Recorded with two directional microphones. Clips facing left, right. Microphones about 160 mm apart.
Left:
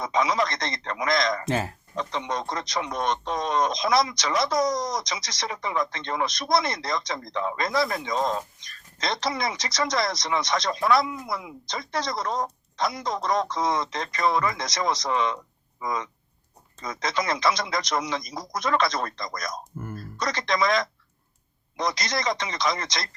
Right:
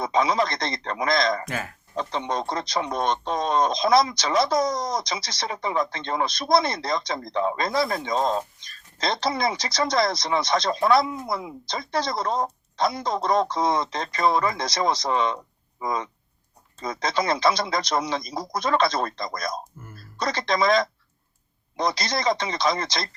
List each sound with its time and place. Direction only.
0.0 s a man's voice: 30° right (ahead or behind)
1.5 s speech: 30° left (ahead or behind)
2.0 s a man's voice: 30° right (ahead or behind)
19.8 s speech: 50° left (ahead or behind)
20.1 s a man's voice: 30° right (ahead or behind)